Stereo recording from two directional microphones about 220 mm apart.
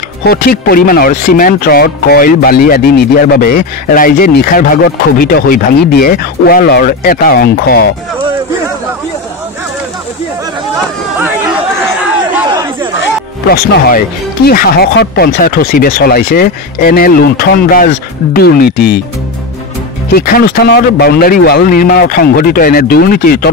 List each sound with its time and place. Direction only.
0.2 s speech: 45° left (ahead or behind)
13.5 s speech: 40° left (ahead or behind)
20.2 s speech: 45° left (ahead or behind)